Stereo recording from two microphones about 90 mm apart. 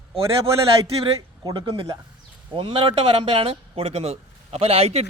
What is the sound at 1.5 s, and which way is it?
Speech, 60° right (ahead or behind).